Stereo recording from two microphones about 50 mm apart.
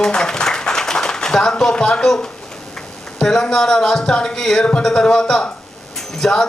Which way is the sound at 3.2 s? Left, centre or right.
Centre.